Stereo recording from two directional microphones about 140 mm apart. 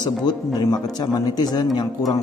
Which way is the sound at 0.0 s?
30° left (ahead or behind).